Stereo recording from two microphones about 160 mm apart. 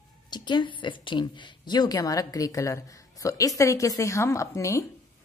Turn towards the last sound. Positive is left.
turn(degrees=20)  # may be behind; listen again after turning